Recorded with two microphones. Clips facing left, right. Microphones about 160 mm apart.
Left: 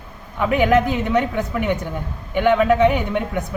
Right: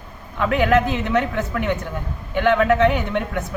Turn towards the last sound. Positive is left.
turn(degrees=10)  # may be behind; listen again after turning